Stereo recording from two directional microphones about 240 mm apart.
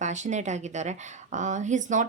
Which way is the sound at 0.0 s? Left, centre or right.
Right.